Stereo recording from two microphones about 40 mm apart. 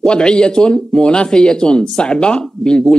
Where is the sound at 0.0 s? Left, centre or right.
Left.